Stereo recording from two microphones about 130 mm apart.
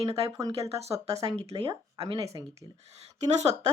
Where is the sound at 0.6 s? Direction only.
55° right (ahead or behind).